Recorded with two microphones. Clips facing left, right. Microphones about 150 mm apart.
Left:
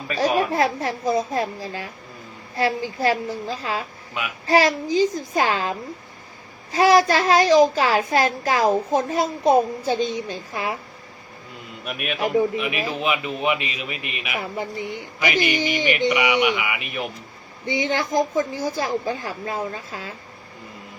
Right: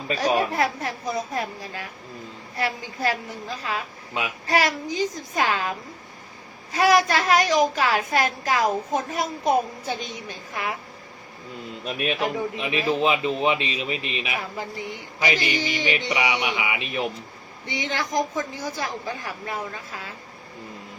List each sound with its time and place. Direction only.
0.2 s a child's voice: 30° left (ahead or behind)
11.9 s a man's voice: 30° right (ahead or behind)
17.7 s a child's voice: 30° left (ahead or behind)